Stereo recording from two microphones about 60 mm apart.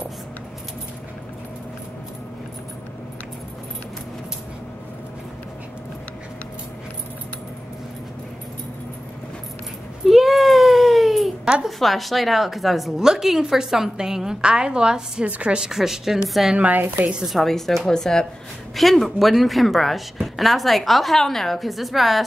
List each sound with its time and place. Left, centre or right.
10.0 s a sound: centre
11.6 s a woman's voice: centre
16.5 s a woman's voice: right
17.3 s a woman's voice: centre